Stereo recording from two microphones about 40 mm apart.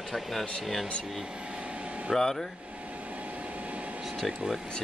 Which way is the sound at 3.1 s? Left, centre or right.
Right.